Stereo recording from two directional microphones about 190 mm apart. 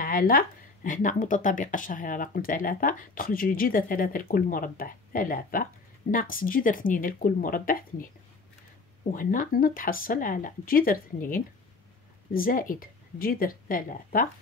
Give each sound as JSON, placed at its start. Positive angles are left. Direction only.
{"t": 0.0, "sound": "speech", "side_deg": 50}
{"t": 9.1, "sound": "speech", "side_deg": 45}